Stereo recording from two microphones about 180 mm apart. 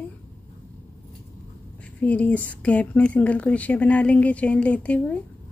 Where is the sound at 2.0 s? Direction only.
10° left (ahead or behind).